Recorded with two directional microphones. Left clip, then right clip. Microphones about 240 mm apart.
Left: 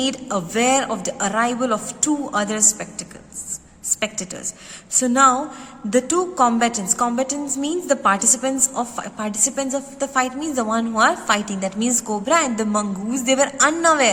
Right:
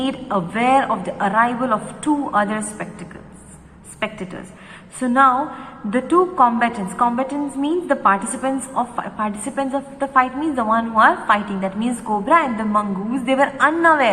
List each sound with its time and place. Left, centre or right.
0.0 s a woman's voice: left
4.0 s a woman's voice: left